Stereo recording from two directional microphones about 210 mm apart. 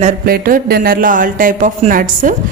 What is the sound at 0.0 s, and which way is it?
Speech, 40° right (ahead or behind).